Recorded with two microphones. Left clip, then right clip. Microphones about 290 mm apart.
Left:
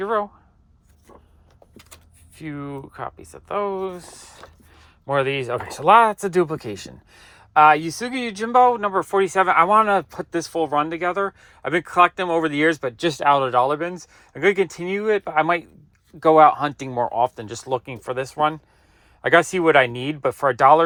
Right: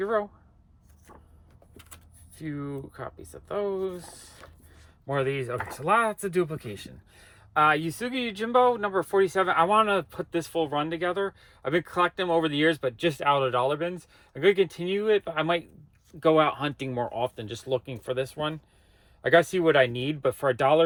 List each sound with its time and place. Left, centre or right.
0.0 s speech: centre
2.3 s speech: centre
16.5 s speech: left
16.9 s speech: centre